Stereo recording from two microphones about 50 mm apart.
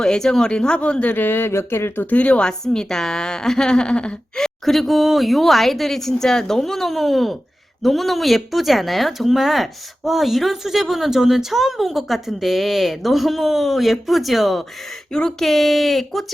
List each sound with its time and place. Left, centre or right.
0.0 s a woman's voice: centre
1.1 s speech: left
2.0 s a woman's voice: left
2.5 s a woman's voice: centre
4.4 s speech: centre